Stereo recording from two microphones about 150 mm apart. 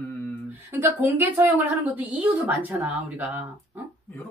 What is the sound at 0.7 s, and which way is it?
Speech, 10° right (ahead or behind).